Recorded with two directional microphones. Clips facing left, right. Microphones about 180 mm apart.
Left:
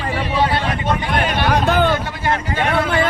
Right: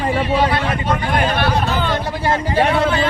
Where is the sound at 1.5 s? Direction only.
55° left (ahead or behind).